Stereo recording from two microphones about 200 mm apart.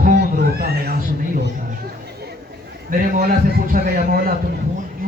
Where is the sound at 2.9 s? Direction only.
50° right (ahead or behind).